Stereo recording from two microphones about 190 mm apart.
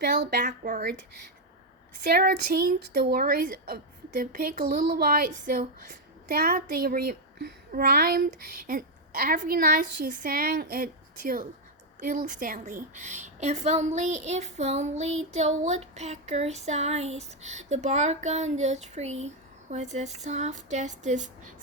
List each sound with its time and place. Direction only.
0.0 s speech: 60° right (ahead or behind)
2.0 s a woman's voice: 55° right (ahead or behind)
11.9 s a sound: 45° right (ahead or behind)